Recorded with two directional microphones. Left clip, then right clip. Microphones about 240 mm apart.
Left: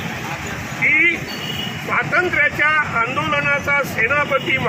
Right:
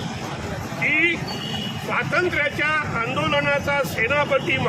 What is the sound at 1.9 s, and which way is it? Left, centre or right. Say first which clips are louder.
Speech: left 4 dB; centre.